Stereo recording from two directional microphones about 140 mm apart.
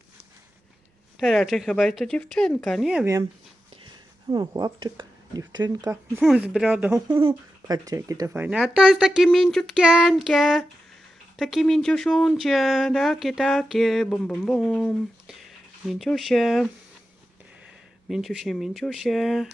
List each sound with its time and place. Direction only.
1.2 s speech: centre (ahead or behind)
4.3 s speech: 30° right (ahead or behind)
6.2 s speech: 5° right (ahead or behind)
7.2 s speech: 30° right (ahead or behind); by 16.6 s centre (ahead or behind)
18.1 s speech: centre (ahead or behind)